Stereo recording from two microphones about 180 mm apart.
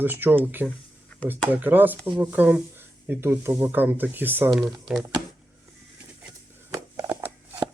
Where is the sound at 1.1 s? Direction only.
5° left (ahead or behind).